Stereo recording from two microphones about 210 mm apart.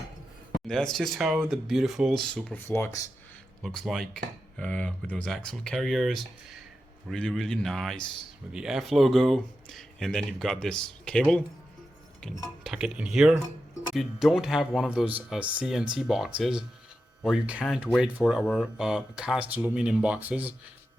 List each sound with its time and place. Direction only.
0.7 s speech: 5° left (ahead or behind)